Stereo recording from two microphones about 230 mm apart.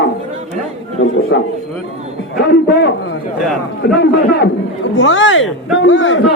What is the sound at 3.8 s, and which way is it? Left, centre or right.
A man's voice, left.